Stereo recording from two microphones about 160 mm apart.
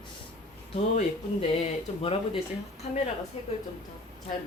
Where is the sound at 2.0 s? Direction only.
35° left (ahead or behind).